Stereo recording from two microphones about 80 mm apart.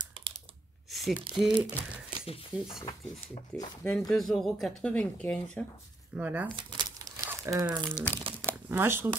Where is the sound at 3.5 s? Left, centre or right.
Centre.